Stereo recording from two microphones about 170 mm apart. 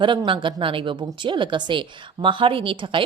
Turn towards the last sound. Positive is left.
turn(degrees=-30)  # may be behind; listen again after turning